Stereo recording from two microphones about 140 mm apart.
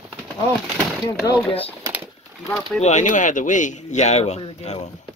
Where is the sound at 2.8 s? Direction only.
55° left (ahead or behind).